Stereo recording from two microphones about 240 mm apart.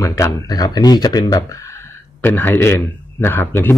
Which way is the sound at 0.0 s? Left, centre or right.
Centre.